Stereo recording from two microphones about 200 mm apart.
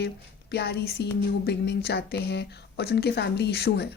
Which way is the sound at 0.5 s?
55° left (ahead or behind).